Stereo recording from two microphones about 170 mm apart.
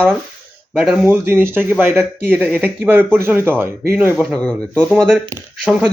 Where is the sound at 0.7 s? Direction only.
5° right (ahead or behind).